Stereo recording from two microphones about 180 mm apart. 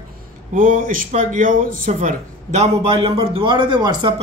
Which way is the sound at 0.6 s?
50° right (ahead or behind).